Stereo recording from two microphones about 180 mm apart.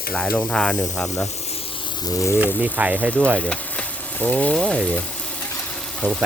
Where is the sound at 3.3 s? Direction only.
5° left (ahead or behind).